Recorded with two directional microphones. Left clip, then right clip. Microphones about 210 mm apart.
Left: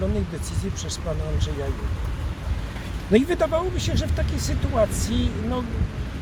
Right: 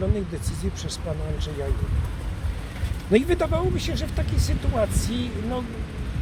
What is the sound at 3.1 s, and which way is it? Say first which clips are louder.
Speech: left 1 dB; 20° right (ahead or behind).